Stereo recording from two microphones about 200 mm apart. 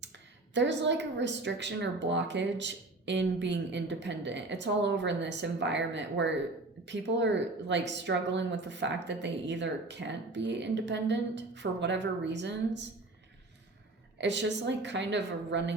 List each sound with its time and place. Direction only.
0.5 s speech: 65° right (ahead or behind)
14.2 s speech: 60° right (ahead or behind)